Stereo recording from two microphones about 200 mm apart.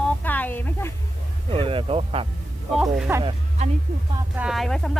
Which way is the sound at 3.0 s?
10° right (ahead or behind).